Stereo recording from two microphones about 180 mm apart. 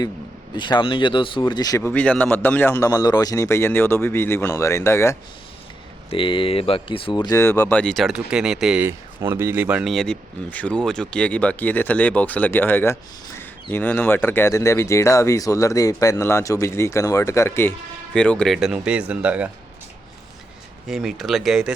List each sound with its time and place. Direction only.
0.5 s speech: 25° left (ahead or behind)
1.9 s speech: 10° left (ahead or behind)
6.1 s speech: 30° left (ahead or behind); by 19.5 s 5° right (ahead or behind)
20.8 s speech: centre (ahead or behind)